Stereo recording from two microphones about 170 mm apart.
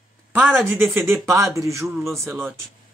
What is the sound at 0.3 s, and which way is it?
Speech, 10° right (ahead or behind).